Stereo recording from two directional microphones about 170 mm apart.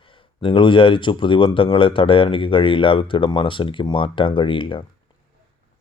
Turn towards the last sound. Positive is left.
turn(degrees=30)  # may be behind; listen again after turning